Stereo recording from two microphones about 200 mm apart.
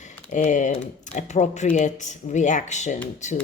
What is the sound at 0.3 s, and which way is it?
A woman's voice, 40° left (ahead or behind).